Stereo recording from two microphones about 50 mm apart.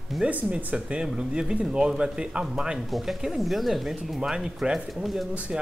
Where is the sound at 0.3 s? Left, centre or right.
Right.